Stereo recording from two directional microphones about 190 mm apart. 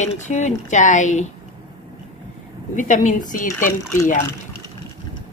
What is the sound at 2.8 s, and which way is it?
Speech, 45° left (ahead or behind).